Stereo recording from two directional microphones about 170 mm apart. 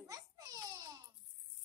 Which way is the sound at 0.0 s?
20° right (ahead or behind).